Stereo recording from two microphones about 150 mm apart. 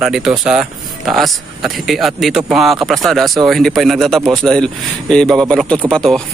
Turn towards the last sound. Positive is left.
turn(degrees=5)  # may be behind; listen again after turning